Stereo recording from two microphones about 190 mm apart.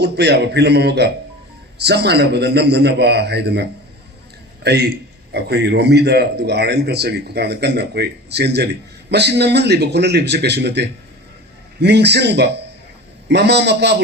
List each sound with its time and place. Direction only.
0.0 s a man's voice: 60° right (ahead or behind)